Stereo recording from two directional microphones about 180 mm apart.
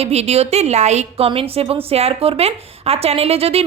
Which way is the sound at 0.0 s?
35° right (ahead or behind).